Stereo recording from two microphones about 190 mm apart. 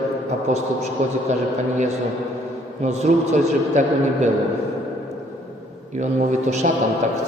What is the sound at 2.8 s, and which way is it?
A man's voice, 35° right (ahead or behind).